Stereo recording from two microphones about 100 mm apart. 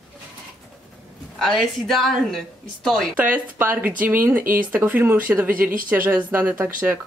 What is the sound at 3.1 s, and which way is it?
Speech, 15° right (ahead or behind).